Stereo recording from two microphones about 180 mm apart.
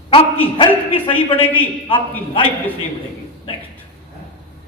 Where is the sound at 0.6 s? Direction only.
30° left (ahead or behind).